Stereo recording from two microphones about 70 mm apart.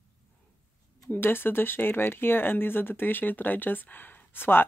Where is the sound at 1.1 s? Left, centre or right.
Left.